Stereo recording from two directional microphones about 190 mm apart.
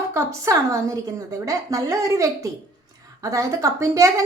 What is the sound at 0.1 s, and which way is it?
A woman's voice, 15° right (ahead or behind).